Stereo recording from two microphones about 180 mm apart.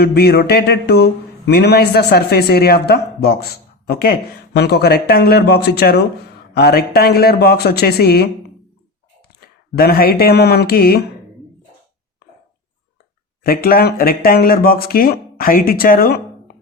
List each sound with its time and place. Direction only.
0.0 s speech: 60° left (ahead or behind)
9.4 s speech: 60° left (ahead or behind)
13.4 s speech: 55° left (ahead or behind)